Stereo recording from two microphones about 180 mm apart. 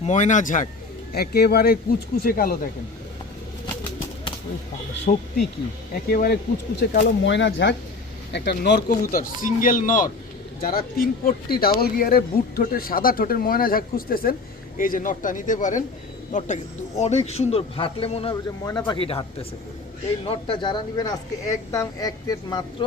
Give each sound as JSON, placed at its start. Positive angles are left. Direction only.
{"t": 0.0, "sound": "speech", "side_deg": 40}
{"t": 1.1, "sound": "speech", "side_deg": 60}
{"t": 5.1, "sound": "speech", "side_deg": 45}
{"t": 6.1, "sound": "speech", "side_deg": 60}
{"t": 6.7, "sound": "speech", "side_deg": 80}
{"t": 8.3, "sound": "speech", "side_deg": 70}
{"t": 8.9, "sound": "a man's voice", "side_deg": 50}